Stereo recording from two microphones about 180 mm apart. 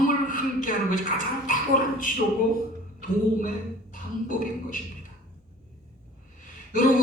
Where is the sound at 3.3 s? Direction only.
50° left (ahead or behind).